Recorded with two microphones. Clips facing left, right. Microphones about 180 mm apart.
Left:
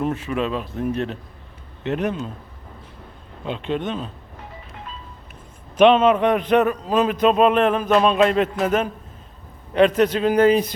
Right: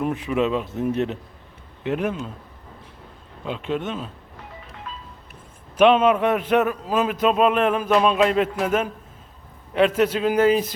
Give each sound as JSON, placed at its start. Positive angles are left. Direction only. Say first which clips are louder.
{"t": 0.0, "sound": "speech", "louder": "right 1 dB", "side_deg": -15}
{"t": 1.8, "sound": "a man's voice", "louder": "left 1 dB", "side_deg": -5}
{"t": 3.4, "sound": "a man's voice", "louder": "left 1 dB", "side_deg": -5}
{"t": 5.7, "sound": "a man's voice", "louder": "left 2 dB", "side_deg": -5}